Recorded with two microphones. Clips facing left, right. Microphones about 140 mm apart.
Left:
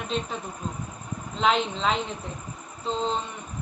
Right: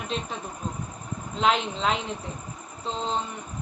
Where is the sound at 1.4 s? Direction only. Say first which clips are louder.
Even; centre (ahead or behind).